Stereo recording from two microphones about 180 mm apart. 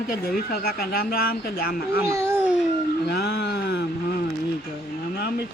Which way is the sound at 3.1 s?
65° left (ahead or behind).